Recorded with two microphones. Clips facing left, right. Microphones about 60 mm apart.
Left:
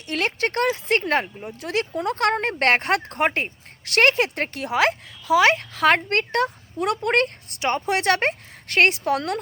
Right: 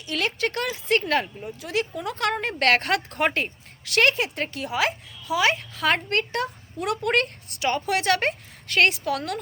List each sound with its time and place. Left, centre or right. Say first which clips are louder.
0.0 s speech: left 2 dB; left
1.5 s speech: left 1 dB; left